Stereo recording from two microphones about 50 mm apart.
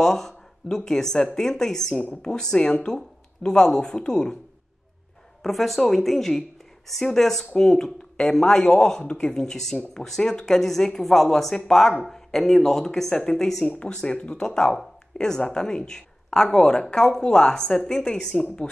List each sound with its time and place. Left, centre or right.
0.0 s speech: centre
5.4 s speech: centre